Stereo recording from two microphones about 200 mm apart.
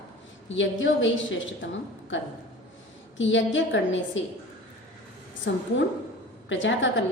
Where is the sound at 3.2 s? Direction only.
70° left (ahead or behind).